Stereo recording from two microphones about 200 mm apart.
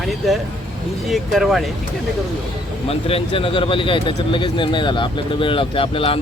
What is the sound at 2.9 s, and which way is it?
Speech, 30° left (ahead or behind).